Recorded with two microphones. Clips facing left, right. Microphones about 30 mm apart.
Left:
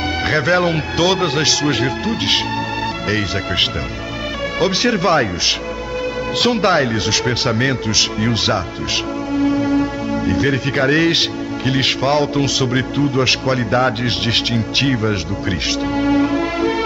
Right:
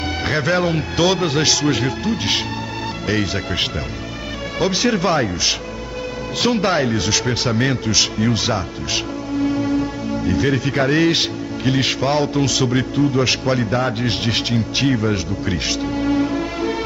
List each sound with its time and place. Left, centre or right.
0.3 s speech: centre
4.6 s speech: centre
6.5 s speech: centre
9.4 s music: centre
12.0 s speech: centre
15.8 s music: centre